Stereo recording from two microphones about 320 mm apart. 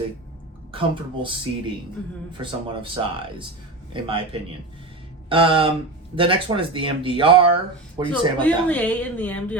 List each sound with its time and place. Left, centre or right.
0.7 s speech: centre
8.4 s a woman's voice: centre